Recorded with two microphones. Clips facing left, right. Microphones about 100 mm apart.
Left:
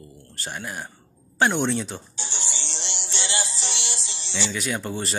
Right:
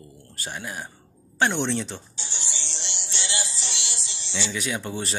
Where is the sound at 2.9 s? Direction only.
45° left (ahead or behind).